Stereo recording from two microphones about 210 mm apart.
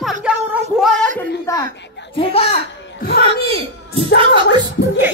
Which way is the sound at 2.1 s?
25° left (ahead or behind).